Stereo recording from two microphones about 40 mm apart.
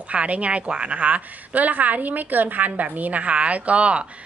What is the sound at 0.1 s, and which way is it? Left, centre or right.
A woman's voice, right.